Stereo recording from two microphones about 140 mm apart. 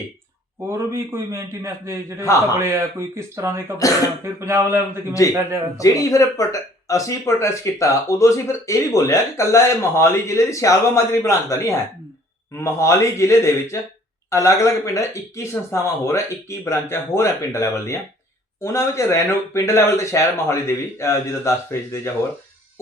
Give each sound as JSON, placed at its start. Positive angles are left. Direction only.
{"t": 0.7, "sound": "a man's voice", "side_deg": -20}
{"t": 3.8, "sound": "speech", "side_deg": 25}
{"t": 4.2, "sound": "a man's voice", "side_deg": -20}
{"t": 5.2, "sound": "speech", "side_deg": 25}